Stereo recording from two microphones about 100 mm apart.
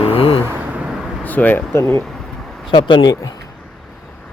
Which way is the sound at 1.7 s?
25° left (ahead or behind).